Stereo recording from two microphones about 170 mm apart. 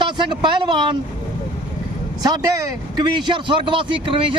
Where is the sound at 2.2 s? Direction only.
20° right (ahead or behind).